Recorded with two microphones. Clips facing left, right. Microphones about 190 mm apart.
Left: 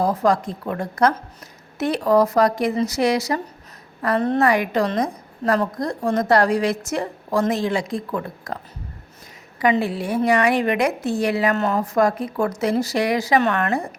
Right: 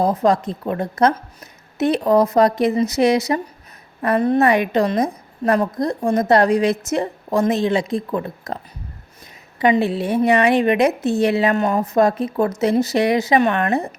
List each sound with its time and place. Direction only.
0.0 s a woman's voice: 20° right (ahead or behind)
4.4 s a woman's voice: 20° right (ahead or behind)
9.6 s a woman's voice: 25° right (ahead or behind)